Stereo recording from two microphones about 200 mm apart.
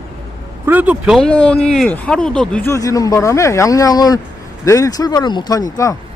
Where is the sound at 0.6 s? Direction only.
10° right (ahead or behind).